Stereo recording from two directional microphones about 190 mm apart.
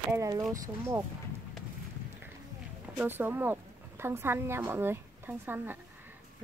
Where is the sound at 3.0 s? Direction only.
10° right (ahead or behind).